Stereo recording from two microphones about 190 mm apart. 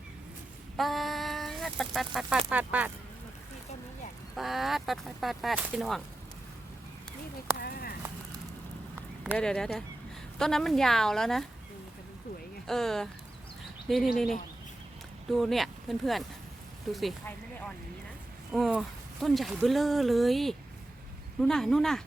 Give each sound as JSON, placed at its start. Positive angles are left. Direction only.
{"t": 0.8, "sound": "chicken", "side_deg": 0}
{"t": 2.5, "sound": "speech", "side_deg": -10}
{"t": 4.4, "sound": "speech", "side_deg": 0}
{"t": 7.6, "sound": "clip-clop", "side_deg": 55}
{"t": 9.4, "sound": "speech", "side_deg": 5}
{"t": 12.6, "sound": "speech", "side_deg": 0}
{"t": 15.3, "sound": "speech", "side_deg": 0}
{"t": 18.5, "sound": "speech", "side_deg": 0}